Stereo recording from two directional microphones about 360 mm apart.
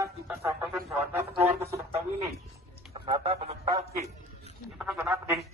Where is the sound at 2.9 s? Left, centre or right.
Centre.